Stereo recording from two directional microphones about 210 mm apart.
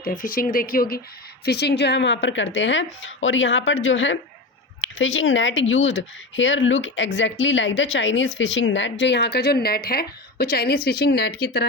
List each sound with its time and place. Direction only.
0.0 s speech: 40° left (ahead or behind)